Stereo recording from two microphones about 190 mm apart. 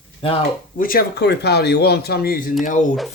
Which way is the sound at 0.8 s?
50° left (ahead or behind).